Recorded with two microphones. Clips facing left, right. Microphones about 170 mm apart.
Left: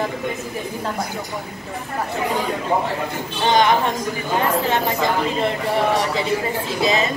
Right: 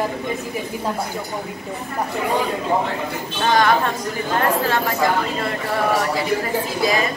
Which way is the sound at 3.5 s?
20° left (ahead or behind).